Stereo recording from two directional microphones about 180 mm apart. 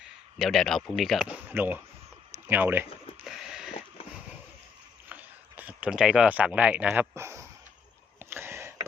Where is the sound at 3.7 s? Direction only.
35° left (ahead or behind).